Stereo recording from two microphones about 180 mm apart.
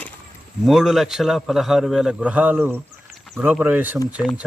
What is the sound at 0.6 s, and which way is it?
A man's voice, centre (ahead or behind).